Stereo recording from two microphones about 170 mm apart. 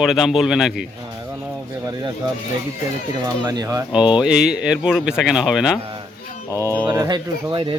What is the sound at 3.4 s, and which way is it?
Speech, 20° right (ahead or behind).